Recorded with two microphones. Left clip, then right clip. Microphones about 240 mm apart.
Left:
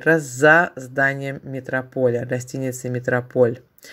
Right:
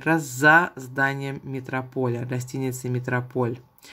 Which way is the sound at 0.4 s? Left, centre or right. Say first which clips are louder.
Left 1 dB; centre.